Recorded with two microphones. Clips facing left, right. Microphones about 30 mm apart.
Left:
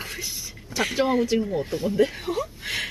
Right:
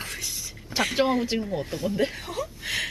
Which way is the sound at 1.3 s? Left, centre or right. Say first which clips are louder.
Left 4 dB; centre.